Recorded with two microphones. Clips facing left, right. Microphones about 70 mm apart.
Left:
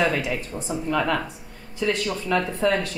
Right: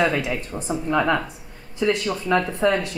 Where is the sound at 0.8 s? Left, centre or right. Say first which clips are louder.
Right 3 dB; right.